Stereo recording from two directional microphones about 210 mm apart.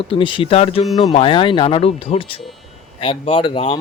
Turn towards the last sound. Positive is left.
turn(degrees=25)  # may be behind; listen again after turning